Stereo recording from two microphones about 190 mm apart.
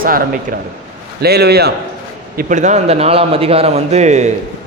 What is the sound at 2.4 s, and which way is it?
Speech, 40° right (ahead or behind).